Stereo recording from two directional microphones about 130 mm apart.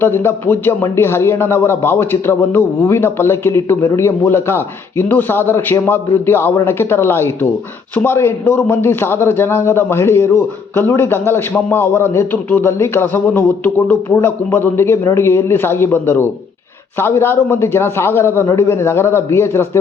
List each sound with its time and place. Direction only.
0.0 s a man's voice: 15° left (ahead or behind)